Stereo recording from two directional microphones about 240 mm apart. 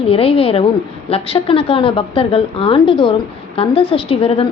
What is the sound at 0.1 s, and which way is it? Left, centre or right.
A woman's voice, left.